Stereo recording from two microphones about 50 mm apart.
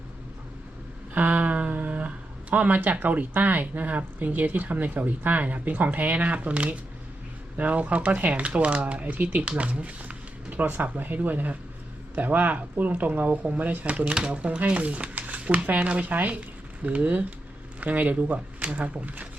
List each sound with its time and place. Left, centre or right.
1.1 s speech: right